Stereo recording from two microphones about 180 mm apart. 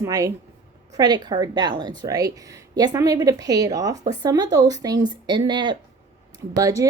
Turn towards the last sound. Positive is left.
turn(degrees=-20)  # may be behind; listen again after turning